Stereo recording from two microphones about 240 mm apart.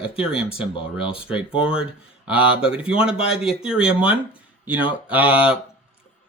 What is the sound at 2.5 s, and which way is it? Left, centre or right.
Speech, centre.